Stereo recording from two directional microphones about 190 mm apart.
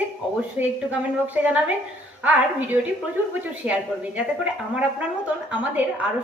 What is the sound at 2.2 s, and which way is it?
Speech, 10° right (ahead or behind).